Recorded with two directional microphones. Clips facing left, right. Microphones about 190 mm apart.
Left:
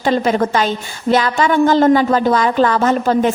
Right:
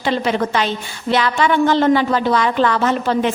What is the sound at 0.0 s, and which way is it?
A woman's voice, 45° left (ahead or behind).